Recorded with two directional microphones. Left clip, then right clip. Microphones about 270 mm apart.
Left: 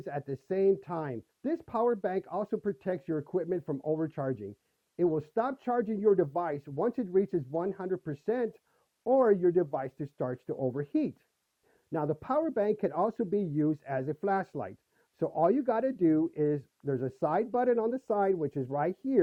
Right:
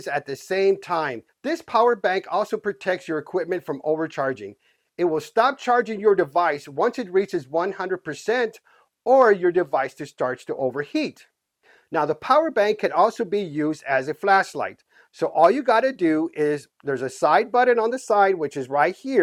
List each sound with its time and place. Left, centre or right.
0.0 s speech: centre
4.1 s speech: centre